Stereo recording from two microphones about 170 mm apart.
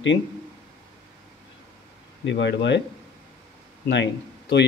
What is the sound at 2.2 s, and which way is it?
Speech, 90° left.